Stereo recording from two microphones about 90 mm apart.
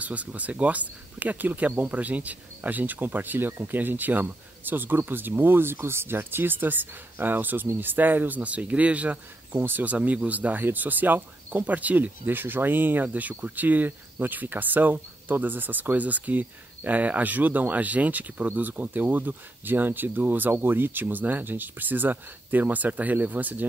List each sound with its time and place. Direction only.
0.0 s speech: 15° right (ahead or behind)